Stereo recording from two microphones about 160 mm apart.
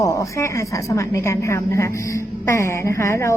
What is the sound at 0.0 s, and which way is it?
A woman's voice, 20° left (ahead or behind).